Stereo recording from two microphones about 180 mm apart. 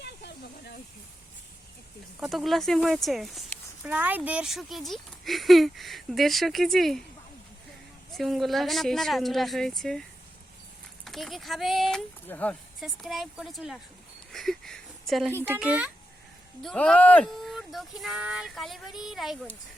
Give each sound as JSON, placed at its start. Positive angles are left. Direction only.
{"t": 0.0, "sound": "hiss", "side_deg": 70}
{"t": 2.2, "sound": "speech", "side_deg": 0}
{"t": 8.1, "sound": "speech", "side_deg": 0}
{"t": 11.0, "sound": "speech", "side_deg": 0}
{"t": 15.3, "sound": "speech", "side_deg": -10}
{"t": 16.6, "sound": "speech", "side_deg": 5}